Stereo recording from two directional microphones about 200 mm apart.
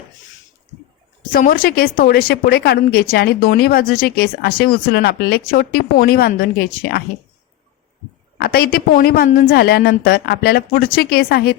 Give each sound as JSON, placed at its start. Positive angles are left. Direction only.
{"t": 1.3, "sound": "a woman's voice", "side_deg": 45}
{"t": 8.4, "sound": "a woman's voice", "side_deg": 50}